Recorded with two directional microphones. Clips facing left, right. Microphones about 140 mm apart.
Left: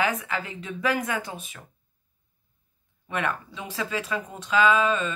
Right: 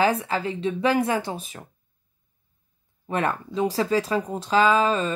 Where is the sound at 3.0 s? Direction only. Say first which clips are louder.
Right 4 dB; 35° right (ahead or behind).